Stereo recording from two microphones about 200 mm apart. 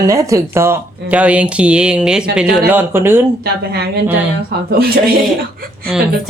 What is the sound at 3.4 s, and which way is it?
Speech, 50° right (ahead or behind).